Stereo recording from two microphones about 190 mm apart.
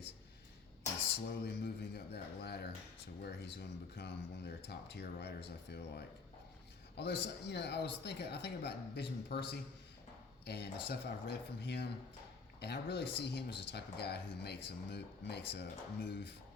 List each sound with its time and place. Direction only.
1.3 s speech: 60° left (ahead or behind)